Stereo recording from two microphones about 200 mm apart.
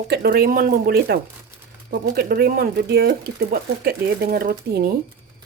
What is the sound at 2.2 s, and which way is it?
Speech, 50° right (ahead or behind).